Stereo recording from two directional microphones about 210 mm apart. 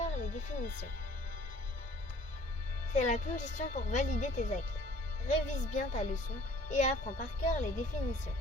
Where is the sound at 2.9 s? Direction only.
35° left (ahead or behind).